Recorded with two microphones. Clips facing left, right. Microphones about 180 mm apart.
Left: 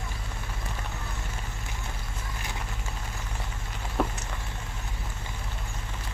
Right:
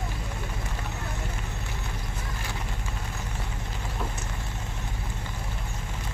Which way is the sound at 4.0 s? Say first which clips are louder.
Left 8 dB; 65° left (ahead or behind).